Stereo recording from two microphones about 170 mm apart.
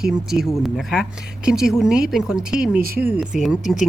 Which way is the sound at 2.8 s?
60° right (ahead or behind).